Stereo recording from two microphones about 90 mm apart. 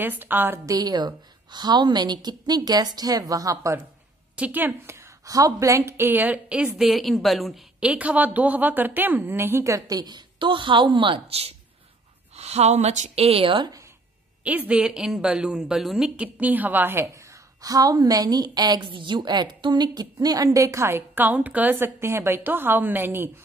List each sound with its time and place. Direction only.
0.0 s a woman's voice: 20° right (ahead or behind)
0.7 s a woman's voice: 45° right (ahead or behind)
4.4 s a woman's voice: 20° right (ahead or behind)
4.9 s a woman's voice: 35° right (ahead or behind); by 6.7 s 15° right (ahead or behind)
6.8 s a woman's voice: centre (ahead or behind)
7.8 s a woman's voice: 15° right (ahead or behind); by 11.5 s 90° right
13.3 s speech: 80° right
14.4 s a woman's voice: 15° right (ahead or behind)
16.3 s a woman's voice: 20° right (ahead or behind)